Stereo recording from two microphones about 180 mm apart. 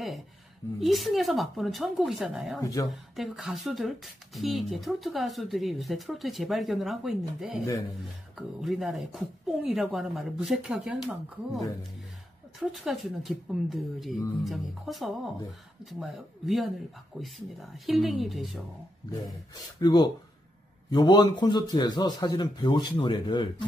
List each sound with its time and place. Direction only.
0.7 s speech: centre (ahead or behind)
2.6 s a man's voice: 20° left (ahead or behind)
2.9 s speech: centre (ahead or behind)
19.5 s a man's voice: 25° left (ahead or behind)